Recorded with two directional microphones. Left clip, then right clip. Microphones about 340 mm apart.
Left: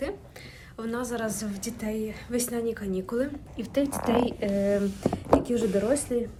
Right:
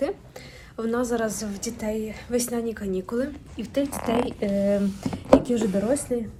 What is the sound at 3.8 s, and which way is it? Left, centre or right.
Speech, left.